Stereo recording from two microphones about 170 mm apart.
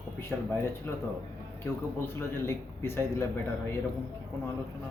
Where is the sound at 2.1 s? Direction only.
15° left (ahead or behind).